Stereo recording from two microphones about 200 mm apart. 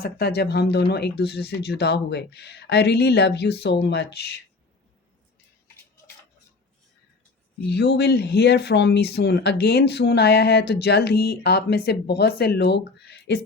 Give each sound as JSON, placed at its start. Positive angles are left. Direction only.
{"t": 0.0, "sound": "speech", "side_deg": 50}
{"t": 7.7, "sound": "speech", "side_deg": 55}